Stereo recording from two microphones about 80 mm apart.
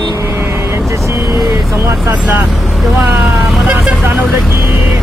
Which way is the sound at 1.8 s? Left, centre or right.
Right.